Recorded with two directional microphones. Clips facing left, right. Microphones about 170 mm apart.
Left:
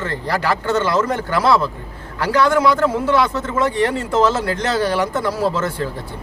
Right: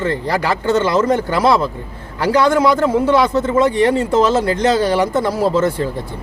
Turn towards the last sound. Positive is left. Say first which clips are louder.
# right 5 dB
turn(degrees=-15)  # may be behind; listen again after turning